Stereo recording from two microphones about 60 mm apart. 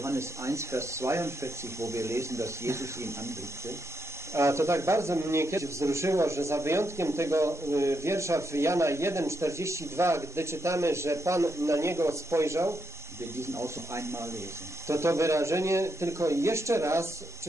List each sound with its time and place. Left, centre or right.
0.0 s speech: right